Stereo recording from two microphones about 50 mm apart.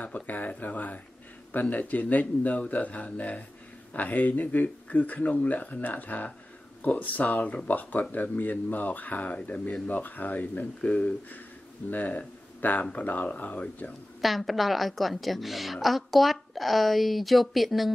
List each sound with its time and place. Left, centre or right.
0.0 s speech: left
14.2 s a woman's voice: centre